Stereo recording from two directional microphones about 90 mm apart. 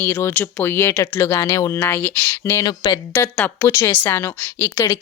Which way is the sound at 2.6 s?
50° left (ahead or behind).